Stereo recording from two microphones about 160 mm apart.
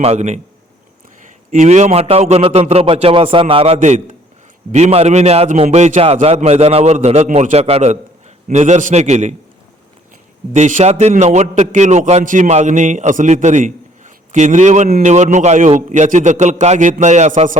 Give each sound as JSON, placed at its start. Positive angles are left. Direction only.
{"t": 0.0, "sound": "a man's voice", "side_deg": -40}
{"t": 10.5, "sound": "a man's voice", "side_deg": -50}